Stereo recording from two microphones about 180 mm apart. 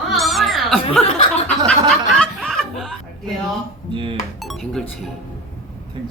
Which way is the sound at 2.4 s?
Centre (ahead or behind).